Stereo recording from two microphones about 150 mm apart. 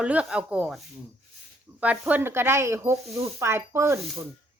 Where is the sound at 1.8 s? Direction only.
10° right (ahead or behind).